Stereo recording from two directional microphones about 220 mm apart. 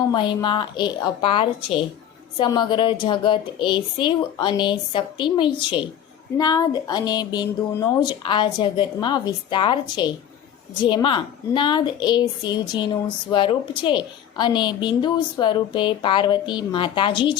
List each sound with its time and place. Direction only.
0.1 s a woman's voice: 20° left (ahead or behind)